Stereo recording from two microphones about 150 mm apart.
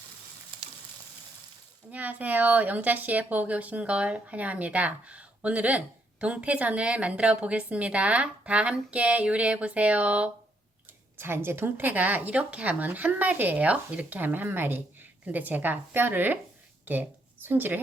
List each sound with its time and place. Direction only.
0.5 s frying: 35° right (ahead or behind)
1.9 s speech: 10° right (ahead or behind)
16.8 s a sound: 10° right (ahead or behind)